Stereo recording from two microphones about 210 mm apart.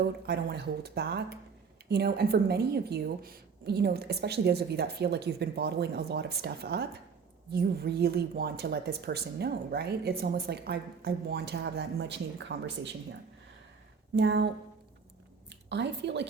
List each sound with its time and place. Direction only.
0.3 s speech: 50° right (ahead or behind)
14.2 s a woman's voice: 55° right (ahead or behind)